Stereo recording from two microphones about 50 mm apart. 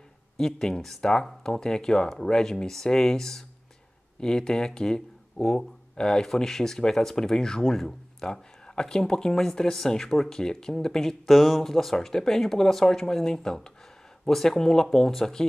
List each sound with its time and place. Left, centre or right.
0.4 s speech: centre